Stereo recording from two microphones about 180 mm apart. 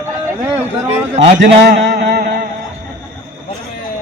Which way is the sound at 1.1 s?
45° right (ahead or behind).